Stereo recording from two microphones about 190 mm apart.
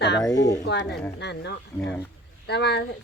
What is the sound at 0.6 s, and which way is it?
Speech, 60° left (ahead or behind).